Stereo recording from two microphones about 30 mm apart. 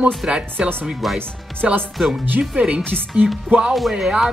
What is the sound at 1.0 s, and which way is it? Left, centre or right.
Speech, centre.